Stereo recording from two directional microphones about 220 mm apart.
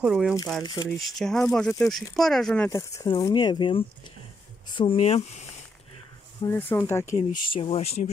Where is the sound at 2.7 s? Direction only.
15° left (ahead or behind).